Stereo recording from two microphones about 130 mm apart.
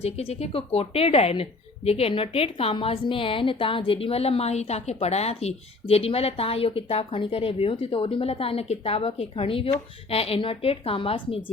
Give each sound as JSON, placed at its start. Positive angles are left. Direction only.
{"t": 0.0, "sound": "speech", "side_deg": 55}